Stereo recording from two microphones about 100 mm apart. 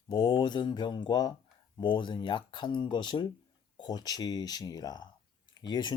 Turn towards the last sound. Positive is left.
turn(degrees=45)  # may be behind; listen again after turning